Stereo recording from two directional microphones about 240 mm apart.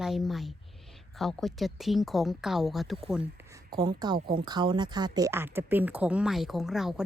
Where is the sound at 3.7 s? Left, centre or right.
Centre.